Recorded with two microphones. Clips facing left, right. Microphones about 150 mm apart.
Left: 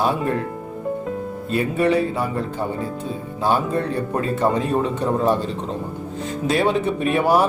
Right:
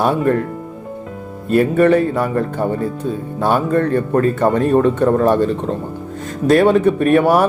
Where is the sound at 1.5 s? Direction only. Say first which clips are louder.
Right 7 dB; 50° right (ahead or behind).